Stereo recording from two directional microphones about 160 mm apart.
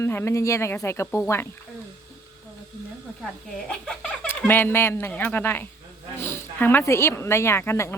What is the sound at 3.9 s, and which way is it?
A woman's voice, 10° left (ahead or behind).